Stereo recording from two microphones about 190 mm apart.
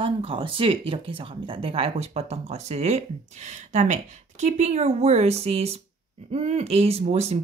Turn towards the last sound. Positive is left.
turn(degrees=-35)  # may be behind; listen again after turning